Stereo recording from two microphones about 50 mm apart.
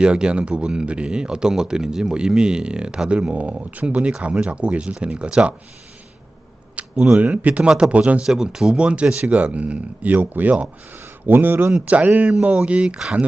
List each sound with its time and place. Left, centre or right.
0.0 s speech: centre
6.8 s a sound: right
7.2 s speech: right
8.2 s speech: centre; by 10.7 s right
11.3 s speech: right
11.9 s speech: right
12.2 s speech: right